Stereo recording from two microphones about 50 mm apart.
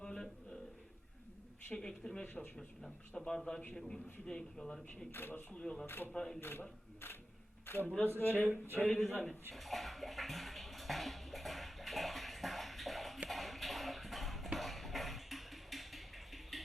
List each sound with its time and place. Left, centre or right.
0.0 s a sound: centre
1.7 s a man's voice: centre
2.2 s speech: left
3.2 s a man's voice: centre
5.1 s speech: left
5.5 s a man's voice: centre
5.8 s a man's voice: left
8.4 s speech: right
9.0 s a man's voice: centre
9.5 s bathtub: centre
13.2 s a sound: centre